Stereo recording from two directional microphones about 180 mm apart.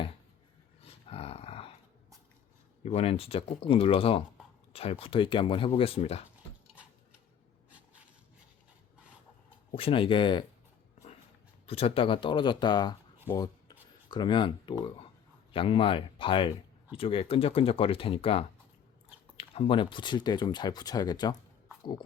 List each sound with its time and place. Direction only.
0.8 s dog: 30° left (ahead or behind)
2.8 s speech: 35° left (ahead or behind)
9.7 s speech: 30° left (ahead or behind)
11.6 s speech: 35° left (ahead or behind)
13.3 s filing: 20° left (ahead or behind)
14.1 s speech: 25° left (ahead or behind)